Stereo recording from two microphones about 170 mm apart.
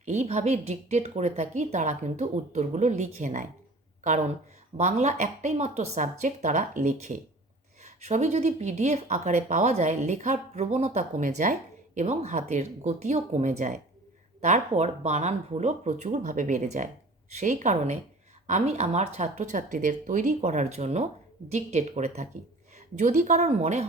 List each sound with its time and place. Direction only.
0.0 s a woman's voice: 40° right (ahead or behind)
4.8 s a woman's voice: 45° right (ahead or behind)